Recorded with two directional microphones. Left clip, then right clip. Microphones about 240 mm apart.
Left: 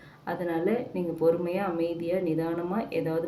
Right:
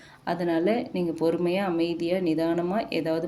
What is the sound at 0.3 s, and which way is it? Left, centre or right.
A woman's voice, right.